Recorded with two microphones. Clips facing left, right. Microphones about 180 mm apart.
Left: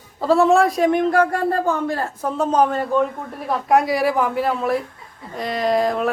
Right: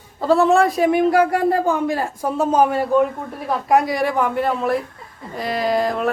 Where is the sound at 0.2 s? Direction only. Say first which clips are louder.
Even; centre (ahead or behind).